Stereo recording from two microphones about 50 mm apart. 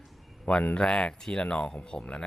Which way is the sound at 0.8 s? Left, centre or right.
Centre.